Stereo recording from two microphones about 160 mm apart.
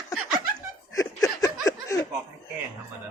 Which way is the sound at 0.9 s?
20° left (ahead or behind).